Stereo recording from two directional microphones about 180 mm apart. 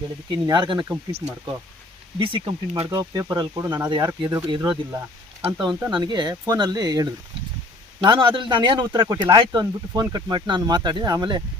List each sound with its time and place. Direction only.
0.3 s speech: 25° right (ahead or behind)
2.1 s speech: 30° right (ahead or behind)
3.0 s speech: 20° right (ahead or behind)